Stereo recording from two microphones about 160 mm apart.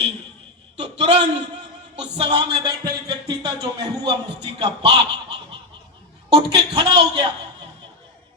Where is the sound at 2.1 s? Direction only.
40° right (ahead or behind).